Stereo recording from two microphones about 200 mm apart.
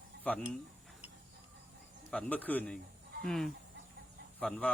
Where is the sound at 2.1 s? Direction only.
5° left (ahead or behind).